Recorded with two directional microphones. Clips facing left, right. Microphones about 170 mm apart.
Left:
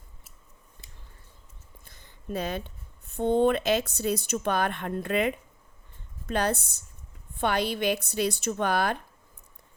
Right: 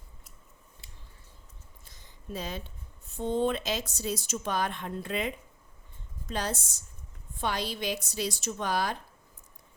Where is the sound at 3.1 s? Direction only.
60° left (ahead or behind).